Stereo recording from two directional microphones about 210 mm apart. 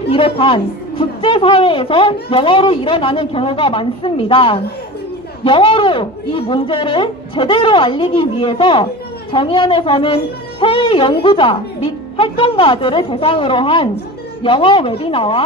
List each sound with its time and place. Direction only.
0.1 s a woman's voice: 25° left (ahead or behind)